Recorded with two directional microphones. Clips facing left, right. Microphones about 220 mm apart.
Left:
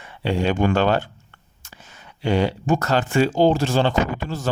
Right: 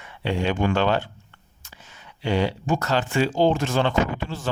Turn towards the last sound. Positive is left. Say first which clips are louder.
# left 2 dB
turn(degrees=40)  # may be behind; listen again after turning